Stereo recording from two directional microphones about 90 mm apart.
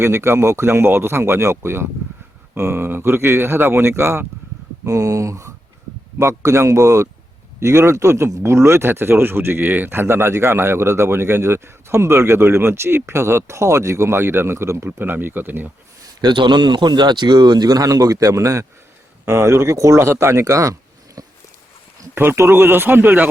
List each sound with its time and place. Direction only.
0.0 s speech: 30° right (ahead or behind)
16.2 s speech: 60° right (ahead or behind); by 20.7 s 35° right (ahead or behind)
21.2 s walk: 40° right (ahead or behind)
22.1 s speech: 25° right (ahead or behind)